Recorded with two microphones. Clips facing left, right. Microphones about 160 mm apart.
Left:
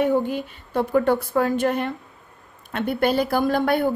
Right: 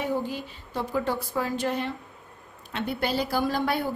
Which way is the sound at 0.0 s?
55° left (ahead or behind).